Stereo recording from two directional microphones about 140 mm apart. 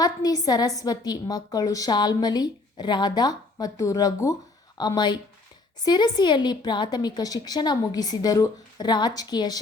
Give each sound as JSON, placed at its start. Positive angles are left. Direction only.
{"t": 0.0, "sound": "a woman's voice", "side_deg": 30}